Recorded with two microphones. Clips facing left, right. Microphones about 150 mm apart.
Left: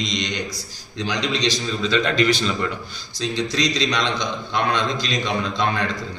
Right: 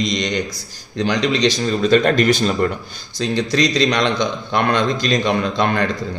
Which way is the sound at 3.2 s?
55° right (ahead or behind).